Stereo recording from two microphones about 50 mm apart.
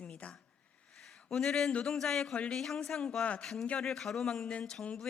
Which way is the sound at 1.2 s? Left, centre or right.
Centre.